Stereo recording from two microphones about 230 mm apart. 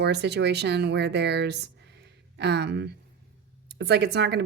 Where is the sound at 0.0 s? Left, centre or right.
Right.